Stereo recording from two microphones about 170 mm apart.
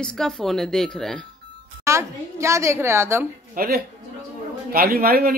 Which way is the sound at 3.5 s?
60° right (ahead or behind).